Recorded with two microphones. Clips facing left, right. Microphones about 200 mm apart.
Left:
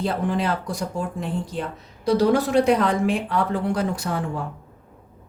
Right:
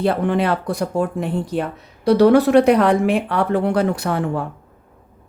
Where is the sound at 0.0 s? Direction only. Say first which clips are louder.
Right 5 dB; 65° right (ahead or behind).